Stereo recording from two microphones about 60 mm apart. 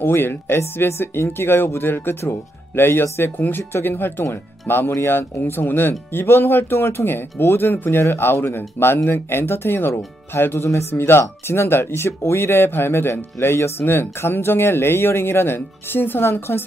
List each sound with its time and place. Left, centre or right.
0.0 s speech: left